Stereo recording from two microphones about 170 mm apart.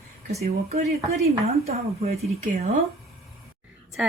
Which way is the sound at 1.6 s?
40° right (ahead or behind).